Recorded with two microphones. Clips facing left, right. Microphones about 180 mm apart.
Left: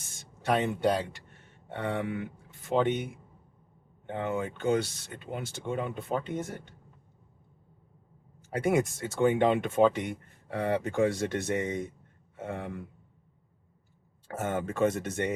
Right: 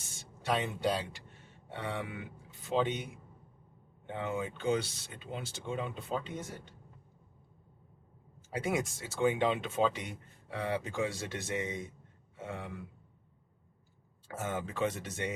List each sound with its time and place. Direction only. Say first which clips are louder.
0.4 s speech: left 5 dB; 55° left (ahead or behind)
8.5 s speech: left 7 dB; 55° left (ahead or behind)
14.3 s speech: left 6 dB; 55° left (ahead or behind)